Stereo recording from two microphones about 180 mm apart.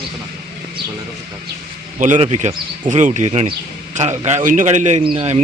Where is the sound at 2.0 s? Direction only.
45° right (ahead or behind).